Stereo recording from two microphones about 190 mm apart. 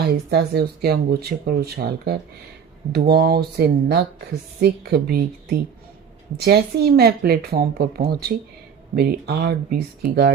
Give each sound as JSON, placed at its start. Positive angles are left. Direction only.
{"t": 0.0, "sound": "speech", "side_deg": -60}